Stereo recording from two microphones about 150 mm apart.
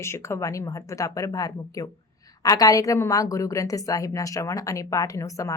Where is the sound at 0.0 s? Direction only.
20° left (ahead or behind).